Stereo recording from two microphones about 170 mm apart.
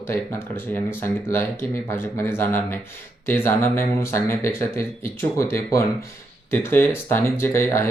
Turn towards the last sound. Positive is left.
turn(degrees=15)  # may be behind; listen again after turning